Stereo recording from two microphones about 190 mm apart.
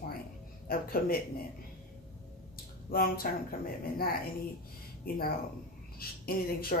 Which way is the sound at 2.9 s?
50° left (ahead or behind).